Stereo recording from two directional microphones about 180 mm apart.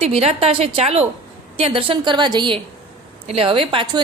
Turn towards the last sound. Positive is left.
turn(degrees=-30)  # may be behind; listen again after turning